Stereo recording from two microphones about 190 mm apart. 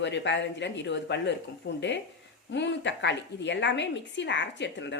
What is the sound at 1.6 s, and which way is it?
A woman's voice, 75° left (ahead or behind).